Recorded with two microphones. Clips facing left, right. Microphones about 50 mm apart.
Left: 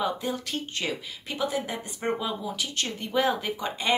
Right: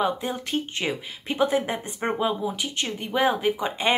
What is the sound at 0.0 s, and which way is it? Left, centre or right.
Speech, right.